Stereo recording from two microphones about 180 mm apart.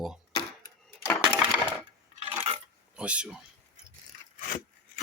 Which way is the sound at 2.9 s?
5° right (ahead or behind).